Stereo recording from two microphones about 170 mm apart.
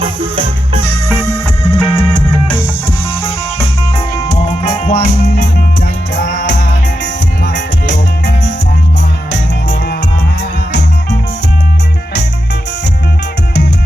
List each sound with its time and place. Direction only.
0.0 s music: 30° right (ahead or behind)
1.2 s music: 20° left (ahead or behind)
1.8 s music: 5° left (ahead or behind)
4.2 s music: 40° left (ahead or behind); by 5.6 s 70° left (ahead or behind)
6.1 s music: 85° left